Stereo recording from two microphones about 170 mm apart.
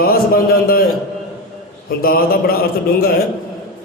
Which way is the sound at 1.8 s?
60° left (ahead or behind).